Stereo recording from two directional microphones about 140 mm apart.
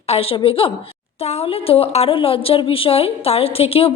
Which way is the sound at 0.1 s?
45° left (ahead or behind).